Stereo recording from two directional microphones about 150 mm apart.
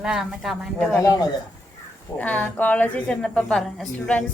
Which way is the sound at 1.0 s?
25° left (ahead or behind).